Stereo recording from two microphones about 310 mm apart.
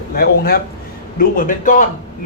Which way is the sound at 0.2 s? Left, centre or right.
Left.